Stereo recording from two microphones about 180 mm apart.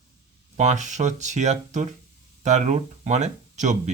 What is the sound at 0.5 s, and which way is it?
Speech, 40° right (ahead or behind).